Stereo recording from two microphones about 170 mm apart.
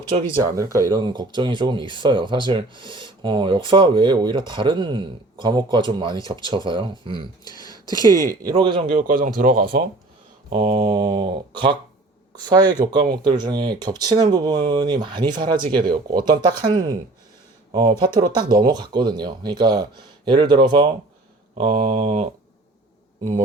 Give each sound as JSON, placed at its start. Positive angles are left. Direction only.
{"t": 0.3, "sound": "speech", "side_deg": -20}
{"t": 7.4, "sound": "speech", "side_deg": 20}
{"t": 8.4, "sound": "speech", "side_deg": -30}
{"t": 9.0, "sound": "a man's voice", "side_deg": -55}
{"t": 10.5, "sound": "speech", "side_deg": -30}
{"t": 15.8, "sound": "speech", "side_deg": -55}
{"t": 16.3, "sound": "speech", "side_deg": -25}
{"t": 18.3, "sound": "speech", "side_deg": -25}
{"t": 21.6, "sound": "a sound", "side_deg": -40}